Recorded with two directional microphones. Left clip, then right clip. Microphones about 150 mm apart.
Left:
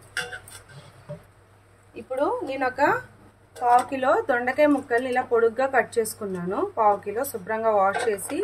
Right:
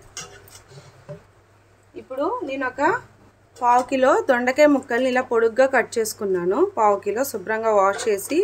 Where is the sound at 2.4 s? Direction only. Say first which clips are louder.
Even; centre (ahead or behind).